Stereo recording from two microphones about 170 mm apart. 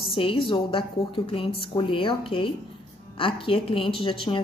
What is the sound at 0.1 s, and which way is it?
A woman's voice, 30° left (ahead or behind).